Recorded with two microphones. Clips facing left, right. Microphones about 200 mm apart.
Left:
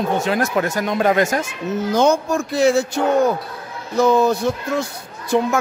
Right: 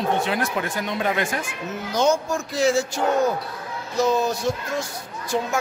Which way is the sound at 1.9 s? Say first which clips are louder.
Left 3 dB; 60° left (ahead or behind).